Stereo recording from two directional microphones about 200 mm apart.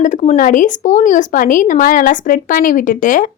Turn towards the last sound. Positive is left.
turn(degrees=40)  # may be behind; listen again after turning